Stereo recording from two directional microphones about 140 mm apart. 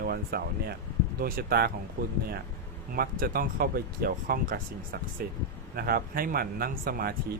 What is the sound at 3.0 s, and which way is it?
Speech, 90° right.